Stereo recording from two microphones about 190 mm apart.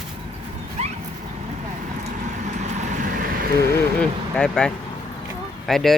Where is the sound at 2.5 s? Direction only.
40° right (ahead or behind).